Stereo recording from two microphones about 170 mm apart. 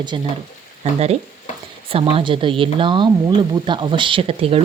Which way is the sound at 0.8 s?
40° right (ahead or behind).